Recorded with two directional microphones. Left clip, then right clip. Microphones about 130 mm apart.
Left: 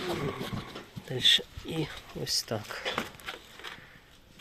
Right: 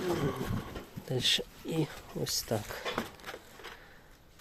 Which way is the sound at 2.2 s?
20° right (ahead or behind).